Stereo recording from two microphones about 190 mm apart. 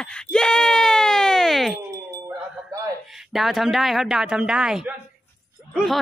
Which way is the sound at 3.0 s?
Centre (ahead or behind).